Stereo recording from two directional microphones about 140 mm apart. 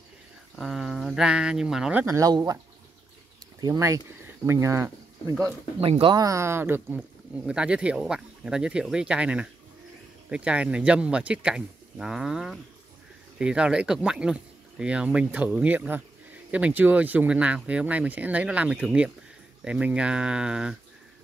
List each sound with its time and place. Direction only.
0.6 s speech: centre (ahead or behind)
2.0 s speech: 25° right (ahead or behind)
3.6 s speech: 25° right (ahead or behind)
5.8 s speech: 40° right (ahead or behind)
6.1 s speech: 25° right (ahead or behind); by 20.7 s 5° right (ahead or behind)